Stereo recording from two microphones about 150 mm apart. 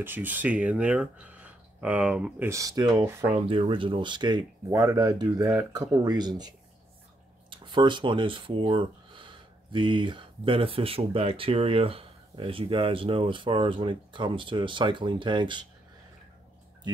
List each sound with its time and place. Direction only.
0.0 s speech: 15° right (ahead or behind)
3.4 s speech: 35° right (ahead or behind)